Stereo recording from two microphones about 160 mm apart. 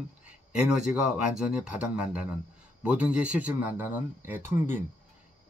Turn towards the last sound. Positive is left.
turn(degrees=-15)  # may be behind; listen again after turning